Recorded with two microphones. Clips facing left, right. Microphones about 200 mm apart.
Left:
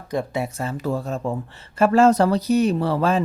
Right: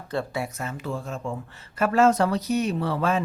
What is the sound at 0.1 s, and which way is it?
Speech, 15° left (ahead or behind).